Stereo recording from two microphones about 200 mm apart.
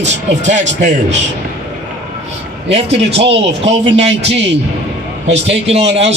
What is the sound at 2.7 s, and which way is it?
A man's voice, 30° right (ahead or behind).